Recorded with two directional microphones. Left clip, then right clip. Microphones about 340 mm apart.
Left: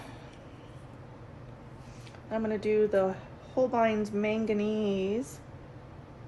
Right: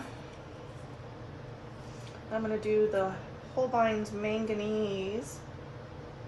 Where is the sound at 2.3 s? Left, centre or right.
Left.